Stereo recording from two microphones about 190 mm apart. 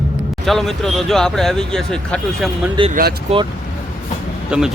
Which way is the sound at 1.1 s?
Centre (ahead or behind).